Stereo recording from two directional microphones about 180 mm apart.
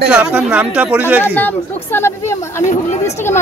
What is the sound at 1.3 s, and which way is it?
Speech, 10° left (ahead or behind).